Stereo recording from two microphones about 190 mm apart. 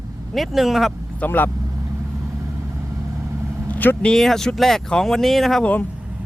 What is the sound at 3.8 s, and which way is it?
Speech, 10° left (ahead or behind).